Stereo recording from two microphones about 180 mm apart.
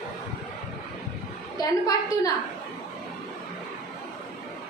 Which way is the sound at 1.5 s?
20° left (ahead or behind).